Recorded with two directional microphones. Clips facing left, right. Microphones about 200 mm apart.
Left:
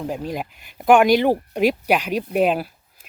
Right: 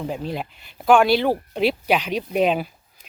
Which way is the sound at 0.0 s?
10° left (ahead or behind).